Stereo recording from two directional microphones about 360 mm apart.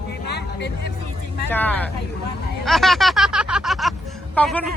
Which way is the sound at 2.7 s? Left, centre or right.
Centre.